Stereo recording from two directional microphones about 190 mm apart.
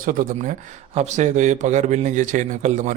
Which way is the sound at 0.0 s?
45° right (ahead or behind).